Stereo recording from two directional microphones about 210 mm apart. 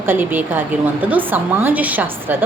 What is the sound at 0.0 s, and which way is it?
A woman's voice, 10° right (ahead or behind).